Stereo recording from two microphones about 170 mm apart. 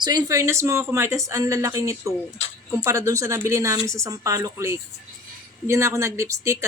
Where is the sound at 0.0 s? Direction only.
25° right (ahead or behind).